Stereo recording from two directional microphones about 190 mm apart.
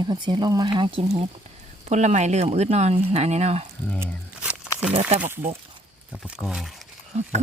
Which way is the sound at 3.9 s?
5° right (ahead or behind).